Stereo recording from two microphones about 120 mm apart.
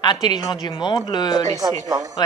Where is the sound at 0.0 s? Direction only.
35° left (ahead or behind).